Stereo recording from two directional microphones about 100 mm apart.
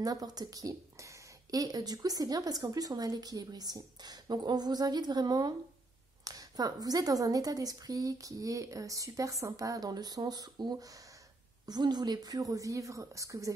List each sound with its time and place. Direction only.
0.0 s a woman's voice: 40° right (ahead or behind)